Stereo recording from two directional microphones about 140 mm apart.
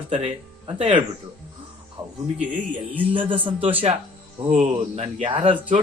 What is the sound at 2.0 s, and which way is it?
Music, 35° right (ahead or behind).